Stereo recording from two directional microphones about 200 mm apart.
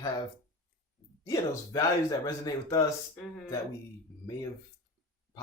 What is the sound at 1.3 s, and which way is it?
Speech, 20° left (ahead or behind).